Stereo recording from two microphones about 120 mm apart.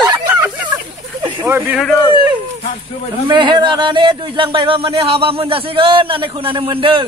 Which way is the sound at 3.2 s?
40° right (ahead or behind).